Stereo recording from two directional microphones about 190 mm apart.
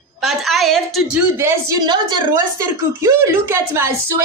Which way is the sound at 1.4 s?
15° right (ahead or behind).